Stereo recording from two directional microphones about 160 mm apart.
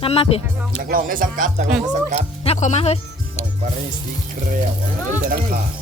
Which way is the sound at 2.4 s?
45° left (ahead or behind).